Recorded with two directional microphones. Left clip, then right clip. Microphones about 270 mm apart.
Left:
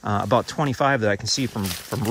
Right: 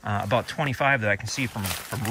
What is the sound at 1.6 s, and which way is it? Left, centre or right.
Speech, centre.